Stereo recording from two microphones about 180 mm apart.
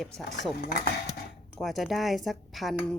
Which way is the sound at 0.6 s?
55° left (ahead or behind).